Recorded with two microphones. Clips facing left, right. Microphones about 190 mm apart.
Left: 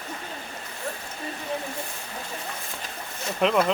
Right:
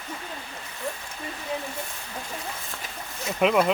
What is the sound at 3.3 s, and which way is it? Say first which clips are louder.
Speech: right 1 dB; 5° right (ahead or behind).